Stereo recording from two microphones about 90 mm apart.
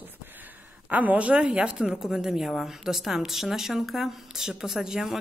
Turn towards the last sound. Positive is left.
turn(degrees=-5)  # may be behind; listen again after turning